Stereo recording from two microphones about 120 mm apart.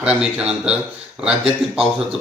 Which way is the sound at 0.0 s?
10° right (ahead or behind).